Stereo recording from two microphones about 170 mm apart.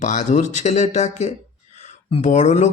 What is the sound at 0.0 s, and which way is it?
A man's voice, 45° left (ahead or behind).